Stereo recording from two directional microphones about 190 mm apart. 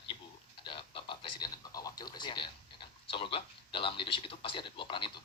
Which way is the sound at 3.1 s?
25° left (ahead or behind).